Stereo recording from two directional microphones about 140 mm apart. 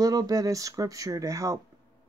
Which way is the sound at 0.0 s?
25° right (ahead or behind).